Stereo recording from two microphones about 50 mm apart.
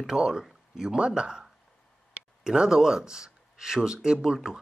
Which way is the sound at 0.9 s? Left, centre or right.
Centre.